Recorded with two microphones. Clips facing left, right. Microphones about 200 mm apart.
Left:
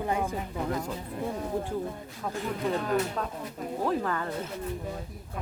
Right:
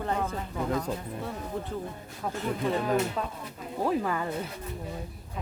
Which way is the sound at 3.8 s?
10° right (ahead or behind).